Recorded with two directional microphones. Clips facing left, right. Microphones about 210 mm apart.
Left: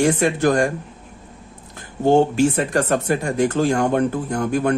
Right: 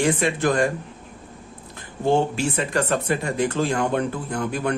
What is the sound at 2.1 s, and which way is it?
Speech, 45° left (ahead or behind).